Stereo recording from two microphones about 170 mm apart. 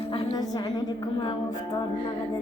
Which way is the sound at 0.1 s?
30° left (ahead or behind).